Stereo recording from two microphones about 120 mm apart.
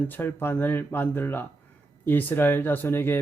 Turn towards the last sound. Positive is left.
turn(degrees=20)  # may be behind; listen again after turning